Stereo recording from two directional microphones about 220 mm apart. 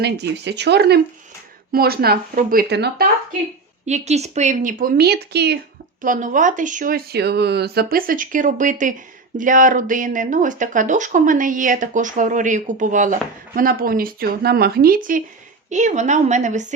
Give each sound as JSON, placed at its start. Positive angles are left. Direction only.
{"t": 0.0, "sound": "speech", "side_deg": -50}
{"t": 3.8, "sound": "speech", "side_deg": -30}
{"t": 6.0, "sound": "speech", "side_deg": -35}